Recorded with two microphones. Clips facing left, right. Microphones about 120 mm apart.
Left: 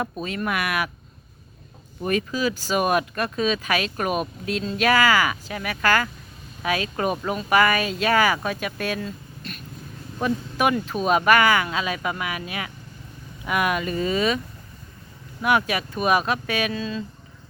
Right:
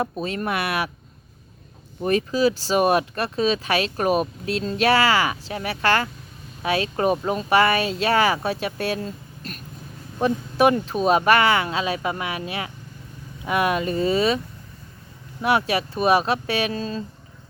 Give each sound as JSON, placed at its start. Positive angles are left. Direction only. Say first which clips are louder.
{"t": 0.0, "sound": "speech", "louder": "right 2 dB", "side_deg": -35}
{"t": 2.0, "sound": "speech", "louder": "right 4 dB", "side_deg": -35}